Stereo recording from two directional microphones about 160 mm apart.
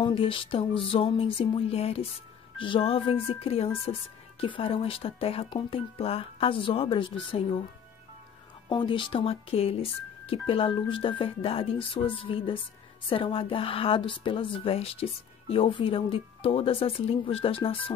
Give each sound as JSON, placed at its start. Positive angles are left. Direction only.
{"t": 0.0, "sound": "a woman's voice", "side_deg": 35}
{"t": 8.6, "sound": "a woman's voice", "side_deg": 30}